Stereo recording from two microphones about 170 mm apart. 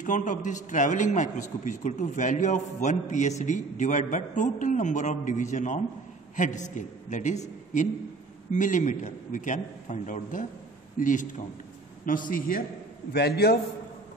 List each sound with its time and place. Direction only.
0.0 s a man's voice: 50° left (ahead or behind)
13.1 s a man's voice: 70° left (ahead or behind)